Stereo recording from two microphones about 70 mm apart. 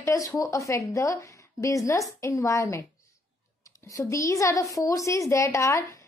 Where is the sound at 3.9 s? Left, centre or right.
Left.